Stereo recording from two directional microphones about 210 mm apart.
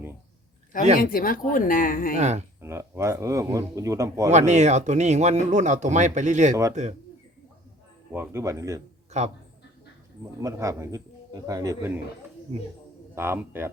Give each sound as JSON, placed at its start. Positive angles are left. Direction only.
{"t": 0.9, "sound": "a woman's voice", "side_deg": 40}
{"t": 2.1, "sound": "speech", "side_deg": -30}
{"t": 2.6, "sound": "speech", "side_deg": -10}
{"t": 4.3, "sound": "speech", "side_deg": -35}
{"t": 8.1, "sound": "speech", "side_deg": -10}
{"t": 9.1, "sound": "a man's voice", "side_deg": -35}
{"t": 10.4, "sound": "speech", "side_deg": -15}
{"t": 13.1, "sound": "speech", "side_deg": -10}